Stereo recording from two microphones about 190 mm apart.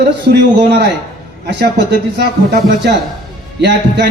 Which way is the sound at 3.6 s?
60° right (ahead or behind).